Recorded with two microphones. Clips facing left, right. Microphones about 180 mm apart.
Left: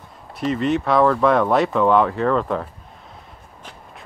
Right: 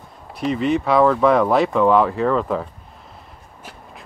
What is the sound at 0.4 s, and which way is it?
Speech, centre (ahead or behind).